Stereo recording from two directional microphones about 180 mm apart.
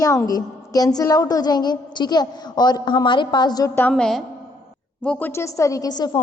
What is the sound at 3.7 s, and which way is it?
A woman's voice, 5° left (ahead or behind).